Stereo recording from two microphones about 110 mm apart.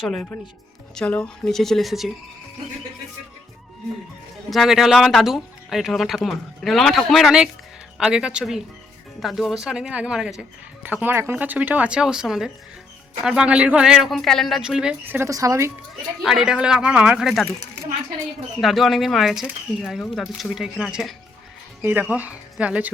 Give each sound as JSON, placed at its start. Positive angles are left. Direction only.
{"t": 0.9, "sound": "speech", "side_deg": 10}
{"t": 4.4, "sound": "speech", "side_deg": 0}
{"t": 10.8, "sound": "speech", "side_deg": -15}
{"t": 15.0, "sound": "speech", "side_deg": -15}
{"t": 15.3, "sound": "a woman's voice", "side_deg": -30}
{"t": 16.2, "sound": "speech", "side_deg": -5}
{"t": 18.6, "sound": "speech", "side_deg": 0}
{"t": 21.8, "sound": "speech", "side_deg": -15}